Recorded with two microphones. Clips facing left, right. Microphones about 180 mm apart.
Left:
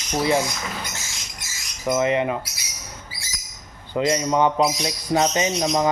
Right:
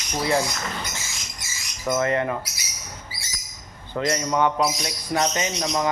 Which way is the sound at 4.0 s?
20° left (ahead or behind).